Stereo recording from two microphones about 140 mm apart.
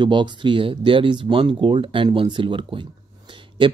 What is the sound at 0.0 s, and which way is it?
Speech, 35° right (ahead or behind).